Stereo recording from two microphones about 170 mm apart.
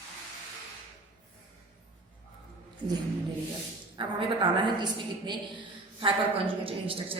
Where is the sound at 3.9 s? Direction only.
30° right (ahead or behind).